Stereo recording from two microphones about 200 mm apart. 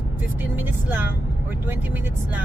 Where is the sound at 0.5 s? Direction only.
10° right (ahead or behind).